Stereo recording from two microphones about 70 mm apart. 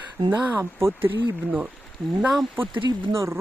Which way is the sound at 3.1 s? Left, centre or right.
Right.